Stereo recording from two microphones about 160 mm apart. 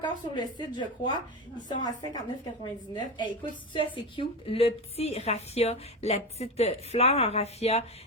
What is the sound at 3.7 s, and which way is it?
A woman's voice, 30° left (ahead or behind).